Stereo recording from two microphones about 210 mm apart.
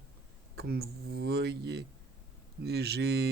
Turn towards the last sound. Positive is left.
turn(degrees=-50)  # may be behind; listen again after turning